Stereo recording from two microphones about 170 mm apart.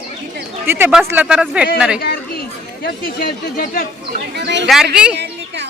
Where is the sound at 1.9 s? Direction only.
65° left (ahead or behind).